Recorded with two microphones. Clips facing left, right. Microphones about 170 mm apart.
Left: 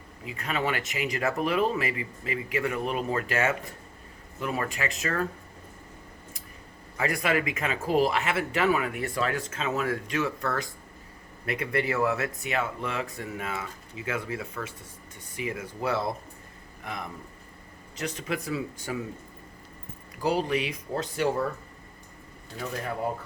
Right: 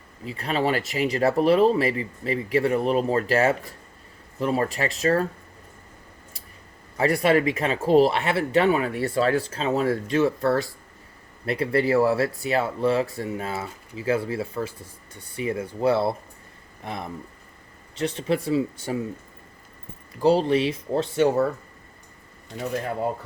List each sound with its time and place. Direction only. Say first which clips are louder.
0.3 s speech: right 5 dB; 35° right (ahead or behind)
6.9 s speech: right 7 dB; 35° right (ahead or behind)
20.2 s speech: right 7 dB; 30° right (ahead or behind)